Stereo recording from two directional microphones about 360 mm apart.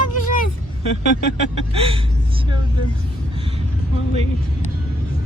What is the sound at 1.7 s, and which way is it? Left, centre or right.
Speech, centre.